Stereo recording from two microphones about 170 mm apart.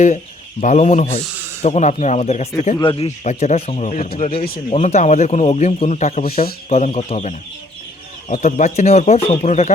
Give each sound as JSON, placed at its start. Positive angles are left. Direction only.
{"t": 0.6, "sound": "a man's voice", "side_deg": 45}
{"t": 2.8, "sound": "a man's voice", "side_deg": 30}
{"t": 4.2, "sound": "a man's voice", "side_deg": 30}